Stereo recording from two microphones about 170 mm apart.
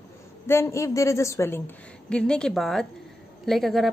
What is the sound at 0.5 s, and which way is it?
A woman's voice, 15° left (ahead or behind).